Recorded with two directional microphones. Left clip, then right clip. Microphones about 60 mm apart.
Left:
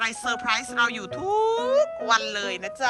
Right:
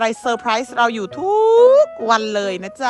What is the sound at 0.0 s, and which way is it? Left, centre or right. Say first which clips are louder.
Speech: right 7 dB; right.